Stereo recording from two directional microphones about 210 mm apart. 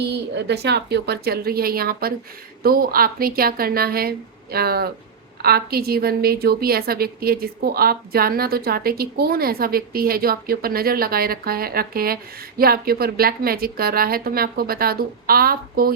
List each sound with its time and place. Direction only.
0.1 s a woman's voice: 55° right (ahead or behind)